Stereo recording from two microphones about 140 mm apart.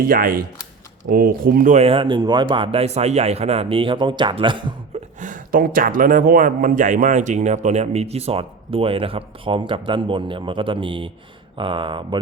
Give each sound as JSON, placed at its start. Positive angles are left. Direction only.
{"t": 0.0, "sound": "speech", "side_deg": -90}
{"t": 1.8, "sound": "speech", "side_deg": -40}
{"t": 2.8, "sound": "speech", "side_deg": -50}
{"t": 5.2, "sound": "speech", "side_deg": -75}